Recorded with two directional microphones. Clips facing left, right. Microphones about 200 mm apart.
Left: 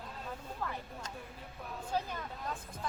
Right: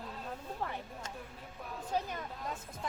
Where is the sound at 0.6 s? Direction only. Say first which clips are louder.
Even; 25° right (ahead or behind).